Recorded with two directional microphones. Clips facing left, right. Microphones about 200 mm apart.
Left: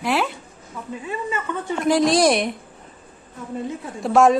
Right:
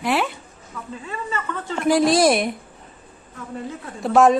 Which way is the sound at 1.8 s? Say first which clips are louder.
Right 1 dB; 5° right (ahead or behind).